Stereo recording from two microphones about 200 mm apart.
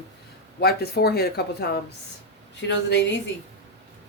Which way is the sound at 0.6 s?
50° left (ahead or behind).